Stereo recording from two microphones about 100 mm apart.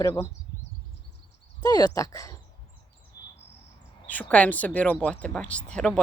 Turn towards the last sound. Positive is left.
turn(degrees=10)  # may be behind; listen again after turning